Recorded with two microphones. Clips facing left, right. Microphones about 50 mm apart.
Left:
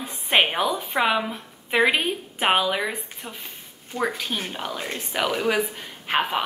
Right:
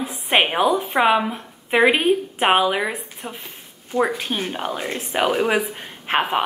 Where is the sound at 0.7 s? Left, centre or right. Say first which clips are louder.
Right 7 dB; centre.